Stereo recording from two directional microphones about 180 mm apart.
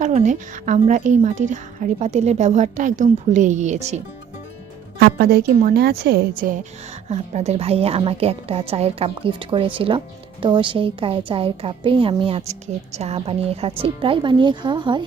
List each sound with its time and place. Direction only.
0.0 s a woman's voice: 40° right (ahead or behind)
4.9 s a woman's voice: 60° right (ahead or behind)
7.1 s a woman's voice: 35° right (ahead or behind)